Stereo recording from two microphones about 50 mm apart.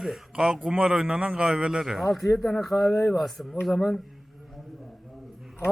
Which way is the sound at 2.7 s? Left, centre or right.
Centre.